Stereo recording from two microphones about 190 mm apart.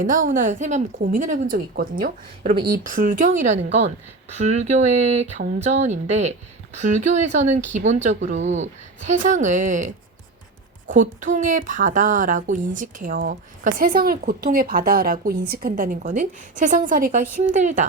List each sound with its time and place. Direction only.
0.0 s speech: 40° right (ahead or behind)
10.9 s speech: 40° right (ahead or behind)